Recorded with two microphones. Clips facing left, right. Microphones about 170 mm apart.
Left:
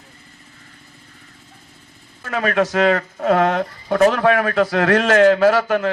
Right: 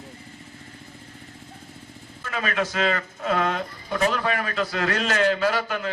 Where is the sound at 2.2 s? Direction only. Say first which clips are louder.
Left 8 dB; 45° left (ahead or behind).